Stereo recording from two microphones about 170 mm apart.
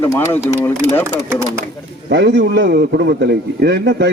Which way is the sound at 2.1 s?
90° right.